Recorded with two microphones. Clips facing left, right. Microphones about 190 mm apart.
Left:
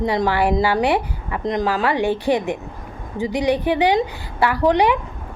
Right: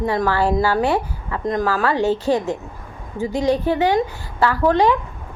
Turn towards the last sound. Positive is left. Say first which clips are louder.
# even
turn(degrees=15)  # may be behind; listen again after turning